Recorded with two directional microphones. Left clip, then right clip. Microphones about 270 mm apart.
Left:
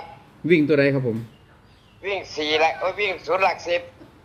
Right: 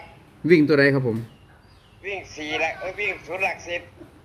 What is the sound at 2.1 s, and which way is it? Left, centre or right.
Speech, left.